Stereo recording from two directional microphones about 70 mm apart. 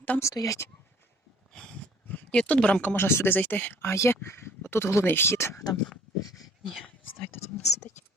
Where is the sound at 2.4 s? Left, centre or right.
Centre.